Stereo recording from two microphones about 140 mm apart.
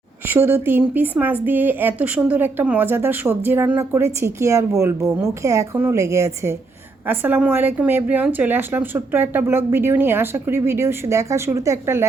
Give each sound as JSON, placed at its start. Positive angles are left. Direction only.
{"t": 0.3, "sound": "speech", "side_deg": -15}